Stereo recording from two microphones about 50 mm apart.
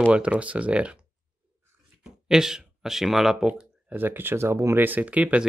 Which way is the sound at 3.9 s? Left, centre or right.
Right.